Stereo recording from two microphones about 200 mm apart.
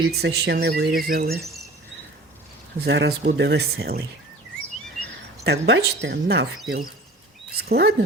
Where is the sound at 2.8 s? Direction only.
55° right (ahead or behind).